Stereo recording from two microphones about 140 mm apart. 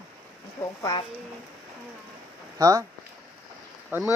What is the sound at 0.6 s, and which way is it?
Speech, 25° left (ahead or behind).